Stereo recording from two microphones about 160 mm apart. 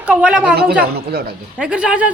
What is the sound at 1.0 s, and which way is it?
Speech, 75° right (ahead or behind).